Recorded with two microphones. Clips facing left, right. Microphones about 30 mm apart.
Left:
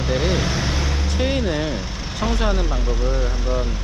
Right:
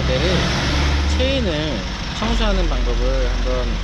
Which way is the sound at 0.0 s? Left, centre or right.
Right.